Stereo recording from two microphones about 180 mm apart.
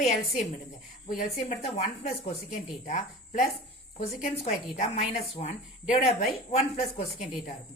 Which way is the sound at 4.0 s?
40° left (ahead or behind).